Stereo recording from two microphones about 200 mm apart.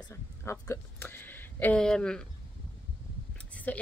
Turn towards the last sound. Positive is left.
turn(degrees=5)  # may be behind; listen again after turning